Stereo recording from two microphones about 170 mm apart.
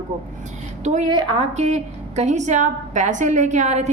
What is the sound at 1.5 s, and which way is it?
A woman's voice, 40° right (ahead or behind).